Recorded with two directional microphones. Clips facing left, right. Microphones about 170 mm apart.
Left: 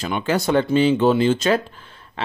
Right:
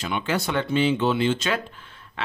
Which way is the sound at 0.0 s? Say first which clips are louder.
Left 5 dB; 40° left (ahead or behind).